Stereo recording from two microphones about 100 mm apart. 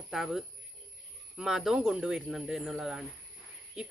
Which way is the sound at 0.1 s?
5° right (ahead or behind).